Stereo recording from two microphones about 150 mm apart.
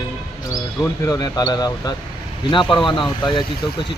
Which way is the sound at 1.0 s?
25° left (ahead or behind).